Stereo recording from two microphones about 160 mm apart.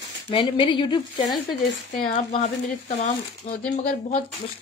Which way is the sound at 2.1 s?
45° left (ahead or behind).